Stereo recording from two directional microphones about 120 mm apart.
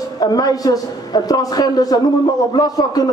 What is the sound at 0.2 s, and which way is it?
A man's voice, 30° left (ahead or behind).